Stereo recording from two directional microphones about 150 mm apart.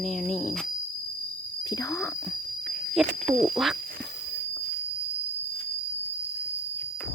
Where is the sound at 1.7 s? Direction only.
20° left (ahead or behind).